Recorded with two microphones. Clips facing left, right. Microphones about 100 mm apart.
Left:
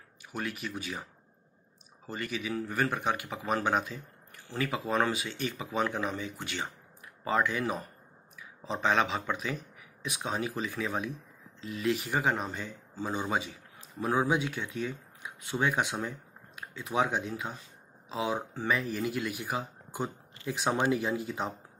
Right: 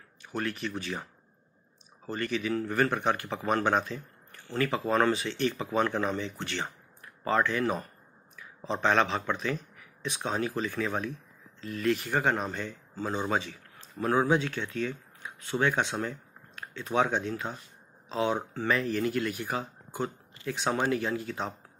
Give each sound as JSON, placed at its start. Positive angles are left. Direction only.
{"t": 0.2, "sound": "speech", "side_deg": 10}
{"t": 2.0, "sound": "speech", "side_deg": 10}